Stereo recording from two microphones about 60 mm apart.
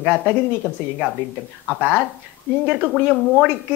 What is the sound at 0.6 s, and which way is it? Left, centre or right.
Speech, right.